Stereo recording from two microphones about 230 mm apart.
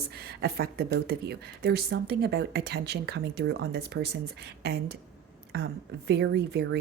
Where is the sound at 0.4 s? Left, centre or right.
Right.